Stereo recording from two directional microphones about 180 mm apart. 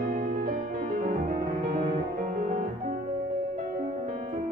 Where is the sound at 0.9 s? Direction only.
55° right (ahead or behind).